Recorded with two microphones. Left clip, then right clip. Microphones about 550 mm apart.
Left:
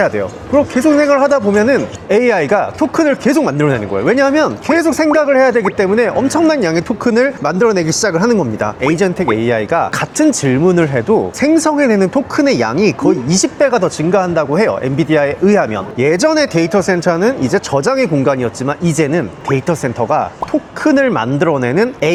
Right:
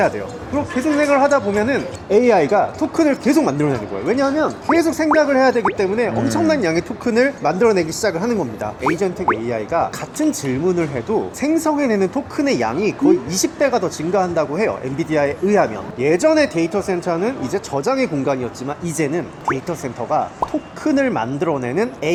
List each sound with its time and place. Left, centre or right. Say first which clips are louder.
0.5 s speech: left 8 dB; left